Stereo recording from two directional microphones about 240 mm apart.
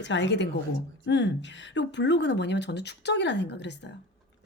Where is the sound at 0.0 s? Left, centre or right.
Left.